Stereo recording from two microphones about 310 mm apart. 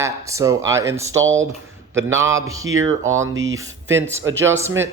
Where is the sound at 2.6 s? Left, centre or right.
Right.